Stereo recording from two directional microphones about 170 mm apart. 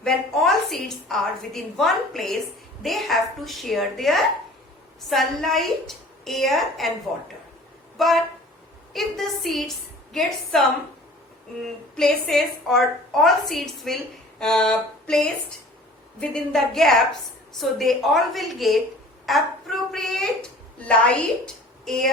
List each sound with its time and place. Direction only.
0.0 s a woman's voice: centre (ahead or behind)
7.9 s a woman's voice: centre (ahead or behind)
11.9 s a woman's voice: 5° left (ahead or behind)
16.3 s a woman's voice: 5° left (ahead or behind)